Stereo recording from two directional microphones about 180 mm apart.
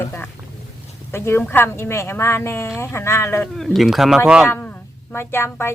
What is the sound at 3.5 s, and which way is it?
Speech, centre (ahead or behind).